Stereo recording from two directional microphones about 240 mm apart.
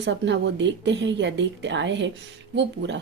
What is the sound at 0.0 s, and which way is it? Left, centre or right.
Speech, right.